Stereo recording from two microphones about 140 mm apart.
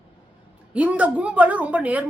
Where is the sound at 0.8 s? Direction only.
10° right (ahead or behind).